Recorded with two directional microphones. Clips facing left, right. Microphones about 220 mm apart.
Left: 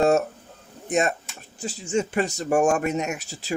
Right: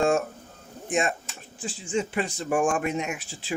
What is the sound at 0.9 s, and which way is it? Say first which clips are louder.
Speech: left 3 dB; 40° left (ahead or behind).